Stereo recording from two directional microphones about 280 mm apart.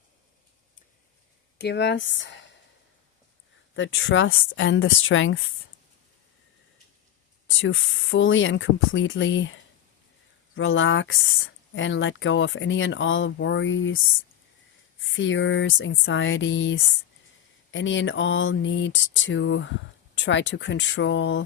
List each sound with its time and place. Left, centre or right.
1.5 s speech: left
3.8 s speech: left
7.5 s speech: left
15.1 s speech: left